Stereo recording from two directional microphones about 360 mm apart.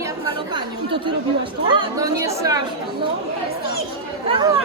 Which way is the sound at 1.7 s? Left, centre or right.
Centre.